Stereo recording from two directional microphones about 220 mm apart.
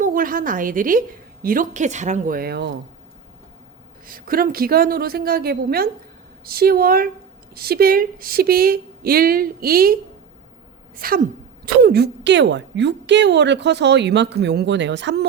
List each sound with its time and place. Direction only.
0.0 s a woman's voice: 40° right (ahead or behind)
4.0 s a woman's voice: 40° right (ahead or behind)